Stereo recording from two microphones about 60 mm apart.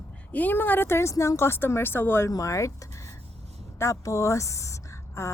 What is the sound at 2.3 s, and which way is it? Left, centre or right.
A woman's voice, left.